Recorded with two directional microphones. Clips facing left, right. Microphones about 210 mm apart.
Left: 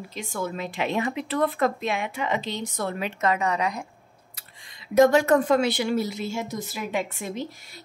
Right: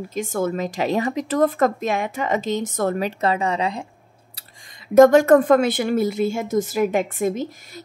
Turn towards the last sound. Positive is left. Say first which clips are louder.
# right 5 dB
turn(degrees=-45)  # may be behind; listen again after turning